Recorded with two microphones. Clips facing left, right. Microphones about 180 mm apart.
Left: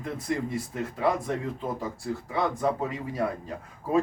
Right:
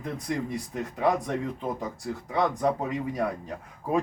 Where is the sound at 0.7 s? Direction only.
20° right (ahead or behind).